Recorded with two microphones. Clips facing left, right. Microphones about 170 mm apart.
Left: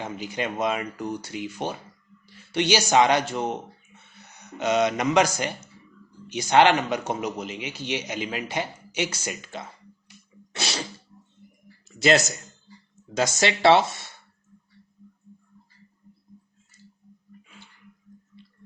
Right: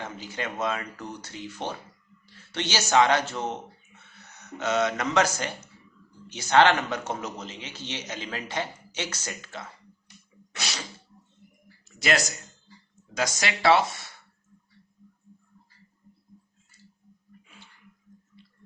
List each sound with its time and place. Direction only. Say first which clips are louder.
0.0 s speech: left 4 dB; 15° left (ahead or behind)
10.5 s sneeze: left 5 dB; 30° left (ahead or behind)
11.9 s a man's voice: left 6 dB; 25° left (ahead or behind)